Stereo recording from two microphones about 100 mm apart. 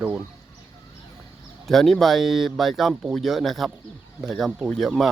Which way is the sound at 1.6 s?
Centre (ahead or behind).